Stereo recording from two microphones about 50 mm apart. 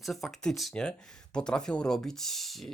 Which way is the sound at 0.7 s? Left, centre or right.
Centre.